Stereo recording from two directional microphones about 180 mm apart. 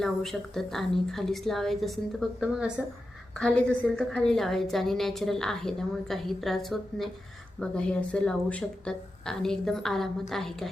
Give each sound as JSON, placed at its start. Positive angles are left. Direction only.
{"t": 0.0, "sound": "a woman's voice", "side_deg": 0}
{"t": 3.3, "sound": "a woman's voice", "side_deg": 5}